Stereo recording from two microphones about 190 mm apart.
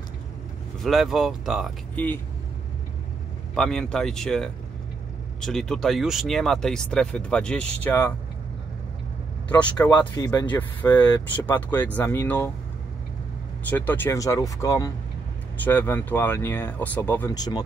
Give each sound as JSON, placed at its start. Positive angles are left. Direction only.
{"t": 0.8, "sound": "speech", "side_deg": 0}
{"t": 3.5, "sound": "speech", "side_deg": 5}
{"t": 9.5, "sound": "speech", "side_deg": 5}
{"t": 10.1, "sound": "speech", "side_deg": 20}
{"t": 13.7, "sound": "speech", "side_deg": 10}